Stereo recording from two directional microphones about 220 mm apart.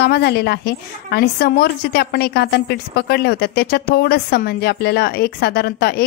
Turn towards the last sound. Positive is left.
turn(degrees=45)  # may be behind; listen again after turning